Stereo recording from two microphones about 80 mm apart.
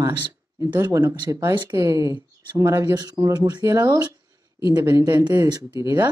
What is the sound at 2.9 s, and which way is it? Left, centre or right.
Speech, right.